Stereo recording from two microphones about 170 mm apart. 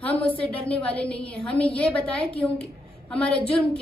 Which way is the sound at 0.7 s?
5° left (ahead or behind).